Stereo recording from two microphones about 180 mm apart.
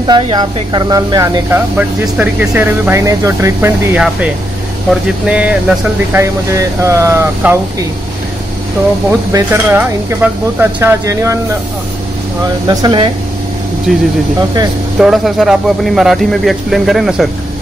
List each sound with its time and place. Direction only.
0.0 s speech: 25° right (ahead or behind); by 4.3 s 5° right (ahead or behind)
5.3 s speech: 5° right (ahead or behind)
9.3 s speech: 15° right (ahead or behind)
12.6 s speech: 25° right (ahead or behind)
13.9 s speech: centre (ahead or behind)